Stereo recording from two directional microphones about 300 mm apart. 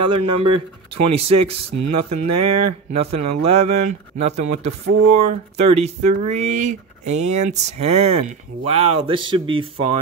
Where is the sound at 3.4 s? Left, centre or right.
Centre.